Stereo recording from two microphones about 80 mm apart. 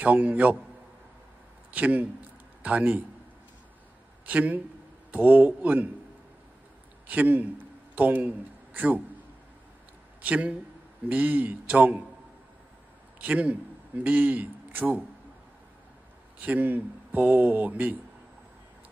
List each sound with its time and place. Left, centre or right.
0.0 s speech: centre
1.7 s speech: centre
4.3 s speech: centre
7.1 s a man's voice: right
10.2 s speech: centre
13.2 s a man's voice: centre
16.3 s speech: right